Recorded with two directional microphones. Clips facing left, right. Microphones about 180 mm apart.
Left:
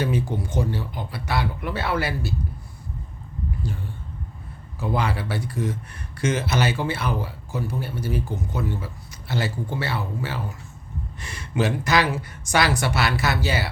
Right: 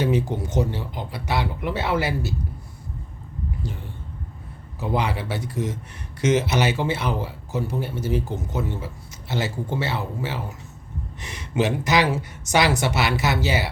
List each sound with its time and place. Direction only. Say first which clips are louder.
0.0 s speech: right 2 dB; 20° right (ahead or behind)
4.8 s speech: right 1 dB; 20° right (ahead or behind)